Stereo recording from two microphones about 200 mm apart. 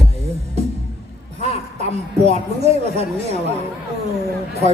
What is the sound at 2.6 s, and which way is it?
Speech, 35° right (ahead or behind).